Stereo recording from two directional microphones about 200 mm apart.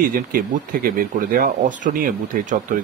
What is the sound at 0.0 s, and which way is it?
A man's voice, 45° right (ahead or behind).